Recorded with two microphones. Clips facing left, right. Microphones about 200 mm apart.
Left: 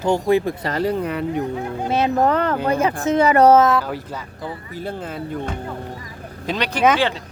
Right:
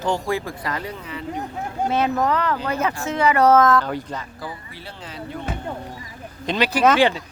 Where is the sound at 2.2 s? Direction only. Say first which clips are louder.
Left 3 dB; 50° left (ahead or behind).